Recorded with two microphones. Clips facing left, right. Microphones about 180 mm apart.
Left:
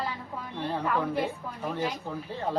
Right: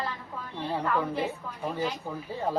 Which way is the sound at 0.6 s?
10° right (ahead or behind).